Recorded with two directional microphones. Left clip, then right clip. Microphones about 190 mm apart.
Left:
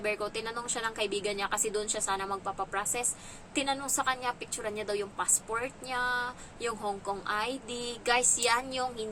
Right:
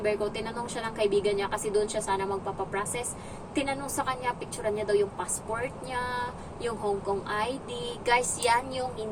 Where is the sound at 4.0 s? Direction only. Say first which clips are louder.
Right 1 dB; 10° left (ahead or behind).